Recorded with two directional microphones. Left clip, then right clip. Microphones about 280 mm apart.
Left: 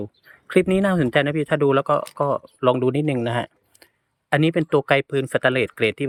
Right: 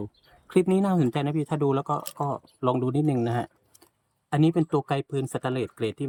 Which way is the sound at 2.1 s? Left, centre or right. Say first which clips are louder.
Left 8 dB; centre.